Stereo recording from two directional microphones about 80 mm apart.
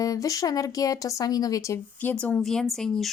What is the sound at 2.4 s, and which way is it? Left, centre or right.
Speech, centre.